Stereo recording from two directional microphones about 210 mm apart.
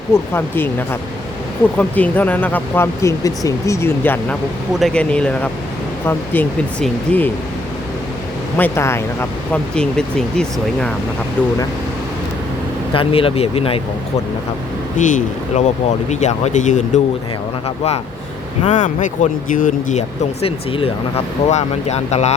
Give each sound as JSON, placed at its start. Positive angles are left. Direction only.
{"t": 0.1, "sound": "speech", "side_deg": 10}
{"t": 8.5, "sound": "speech", "side_deg": 10}
{"t": 12.9, "sound": "speech", "side_deg": 25}
{"t": 14.9, "sound": "speech", "side_deg": 35}
{"t": 18.6, "sound": "speech", "side_deg": 35}